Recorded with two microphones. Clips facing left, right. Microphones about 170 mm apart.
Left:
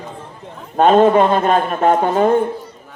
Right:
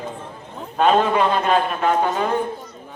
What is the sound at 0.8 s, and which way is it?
A man's voice, 50° left (ahead or behind).